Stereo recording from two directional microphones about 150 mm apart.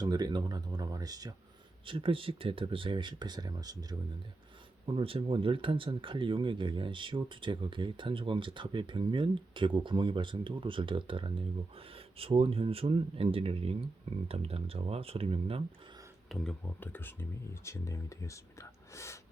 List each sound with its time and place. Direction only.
0.0 s speech: 25° right (ahead or behind)
1.9 s speech: 35° right (ahead or behind)
4.9 s speech: 35° right (ahead or behind)
16.3 s speech: 5° left (ahead or behind)
16.8 s speech: 15° left (ahead or behind)